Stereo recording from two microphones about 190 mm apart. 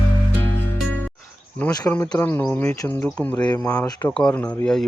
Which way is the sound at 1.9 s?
10° left (ahead or behind).